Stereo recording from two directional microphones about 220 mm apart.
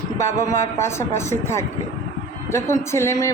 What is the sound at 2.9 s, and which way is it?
Speech, 10° left (ahead or behind).